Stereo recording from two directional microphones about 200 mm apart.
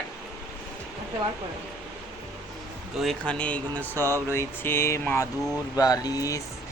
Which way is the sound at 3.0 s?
5° left (ahead or behind).